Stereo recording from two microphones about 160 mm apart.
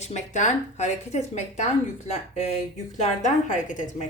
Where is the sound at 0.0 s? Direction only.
50° left (ahead or behind).